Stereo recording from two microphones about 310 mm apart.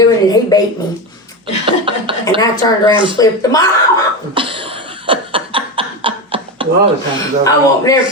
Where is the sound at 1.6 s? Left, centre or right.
Centre.